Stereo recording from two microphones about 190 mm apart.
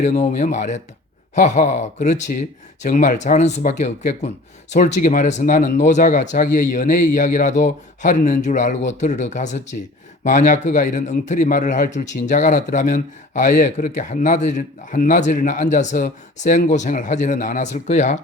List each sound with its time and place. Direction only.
0.0 s a man's voice: 40° left (ahead or behind)